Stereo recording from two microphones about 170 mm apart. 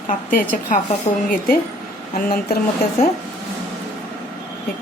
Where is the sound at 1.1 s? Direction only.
35° left (ahead or behind).